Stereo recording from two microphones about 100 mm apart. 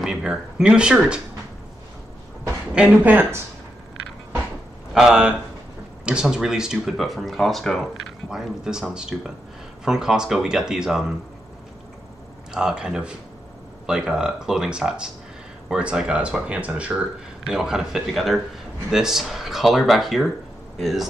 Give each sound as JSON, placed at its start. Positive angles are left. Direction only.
{"t": 0.0, "sound": "speech", "side_deg": -5}
{"t": 2.7, "sound": "speech", "side_deg": -10}
{"t": 4.9, "sound": "speech", "side_deg": -5}
{"t": 12.5, "sound": "speech", "side_deg": -5}